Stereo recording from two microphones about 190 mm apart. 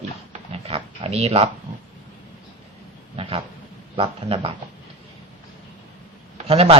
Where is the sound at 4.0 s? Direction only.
30° right (ahead or behind).